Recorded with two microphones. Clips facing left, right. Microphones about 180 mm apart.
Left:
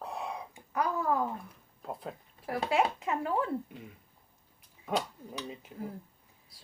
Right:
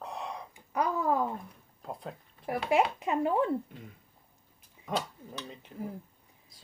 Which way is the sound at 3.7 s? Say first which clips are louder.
Left 1 dB; 5° left (ahead or behind).